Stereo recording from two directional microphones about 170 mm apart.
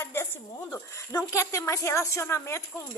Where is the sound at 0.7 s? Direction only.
20° left (ahead or behind).